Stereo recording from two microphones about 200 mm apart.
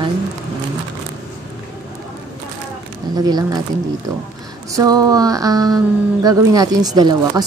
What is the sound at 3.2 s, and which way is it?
Speech, 20° right (ahead or behind).